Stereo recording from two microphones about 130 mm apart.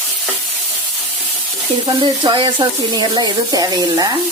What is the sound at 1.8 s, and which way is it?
Speech, 35° right (ahead or behind).